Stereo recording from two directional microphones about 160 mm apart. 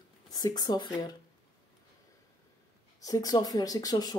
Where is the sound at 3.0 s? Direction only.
20° left (ahead or behind).